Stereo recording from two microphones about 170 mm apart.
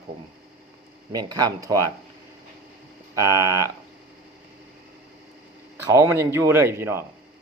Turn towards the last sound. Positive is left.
turn(degrees=-15)  # may be behind; listen again after turning